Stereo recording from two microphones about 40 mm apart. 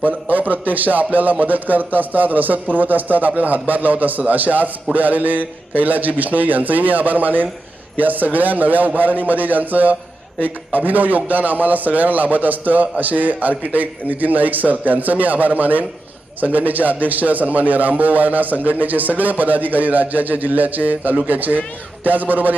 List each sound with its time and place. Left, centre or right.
0.0 s a man's voice: right